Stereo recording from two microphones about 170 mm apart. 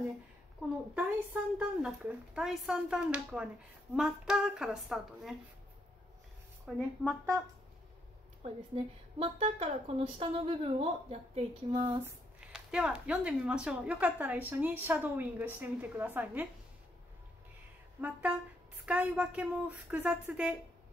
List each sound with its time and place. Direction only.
0.6 s speech: 5° right (ahead or behind)
6.6 s speech: centre (ahead or behind)
8.4 s a woman's voice: 35° right (ahead or behind)
12.4 s a woman's voice: 5° right (ahead or behind)
18.0 s a woman's voice: 10° right (ahead or behind)